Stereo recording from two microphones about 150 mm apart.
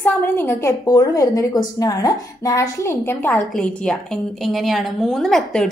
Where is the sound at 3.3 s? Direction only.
5° left (ahead or behind).